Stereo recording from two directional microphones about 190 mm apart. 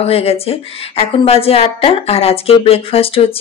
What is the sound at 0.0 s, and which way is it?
Speech, 30° left (ahead or behind).